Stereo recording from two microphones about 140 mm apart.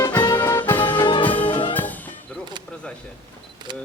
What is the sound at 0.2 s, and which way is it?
Music, 15° left (ahead or behind).